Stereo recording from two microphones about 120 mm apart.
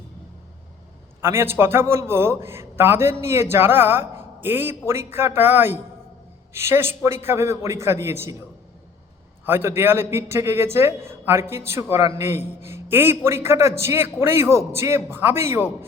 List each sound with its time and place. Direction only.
1.2 s a man's voice: 20° right (ahead or behind)
9.5 s a man's voice: 20° right (ahead or behind)